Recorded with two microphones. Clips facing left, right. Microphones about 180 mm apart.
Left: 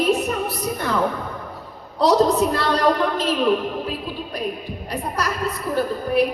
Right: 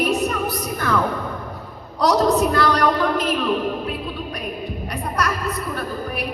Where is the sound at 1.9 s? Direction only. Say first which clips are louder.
Left 1 dB; 25° left (ahead or behind).